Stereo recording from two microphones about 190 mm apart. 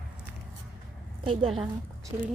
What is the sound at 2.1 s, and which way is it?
Speech, 15° right (ahead or behind).